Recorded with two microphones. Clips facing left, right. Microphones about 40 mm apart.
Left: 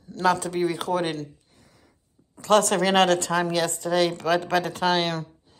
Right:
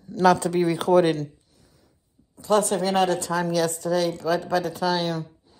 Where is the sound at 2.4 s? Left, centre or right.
Left.